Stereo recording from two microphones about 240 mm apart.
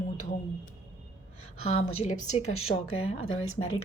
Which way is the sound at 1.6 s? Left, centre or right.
Left.